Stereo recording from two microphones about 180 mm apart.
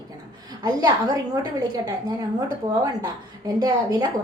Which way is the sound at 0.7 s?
25° right (ahead or behind).